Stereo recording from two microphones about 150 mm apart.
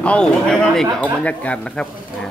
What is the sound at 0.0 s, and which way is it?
Speech, 5° left (ahead or behind).